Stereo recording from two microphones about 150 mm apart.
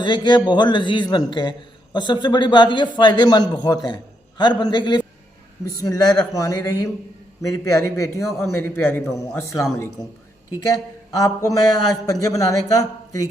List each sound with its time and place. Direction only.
0.0 s a man's voice: 30° left (ahead or behind); by 9.4 s 15° left (ahead or behind)
11.1 s a man's voice: 25° left (ahead or behind)